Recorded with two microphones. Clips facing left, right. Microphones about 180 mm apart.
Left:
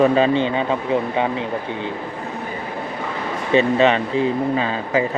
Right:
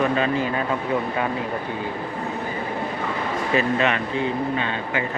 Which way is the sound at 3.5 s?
30° left (ahead or behind).